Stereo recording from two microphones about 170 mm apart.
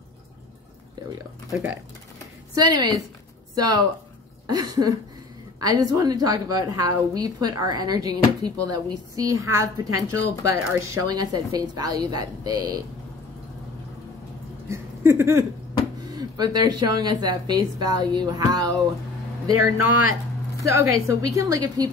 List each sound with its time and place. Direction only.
1.1 s a woman's voice: 15° right (ahead or behind)
14.7 s a sound: 15° right (ahead or behind)
16.1 s a woman's voice: 25° right (ahead or behind)